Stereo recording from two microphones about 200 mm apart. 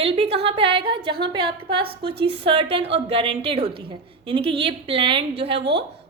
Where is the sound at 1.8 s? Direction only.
55° right (ahead or behind).